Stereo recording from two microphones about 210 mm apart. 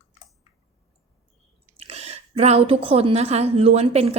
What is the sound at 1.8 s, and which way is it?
A woman's voice, 30° right (ahead or behind).